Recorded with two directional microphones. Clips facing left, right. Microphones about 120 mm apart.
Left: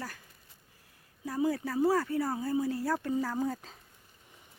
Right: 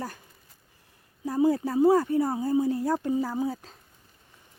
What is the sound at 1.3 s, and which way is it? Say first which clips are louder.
Speech: right 7 dB; 25° right (ahead or behind).